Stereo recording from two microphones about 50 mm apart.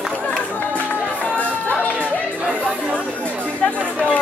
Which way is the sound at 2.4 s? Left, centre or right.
Right.